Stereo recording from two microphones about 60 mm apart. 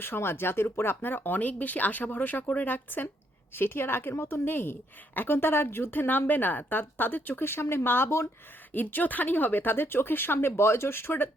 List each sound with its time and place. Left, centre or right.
0.0 s a woman's voice: left
8.7 s a woman's voice: left